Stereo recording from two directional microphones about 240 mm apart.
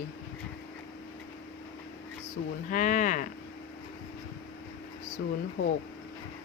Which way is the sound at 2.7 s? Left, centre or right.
Left.